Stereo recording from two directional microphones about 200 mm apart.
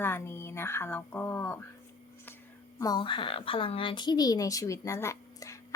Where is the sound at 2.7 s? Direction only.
20° left (ahead or behind).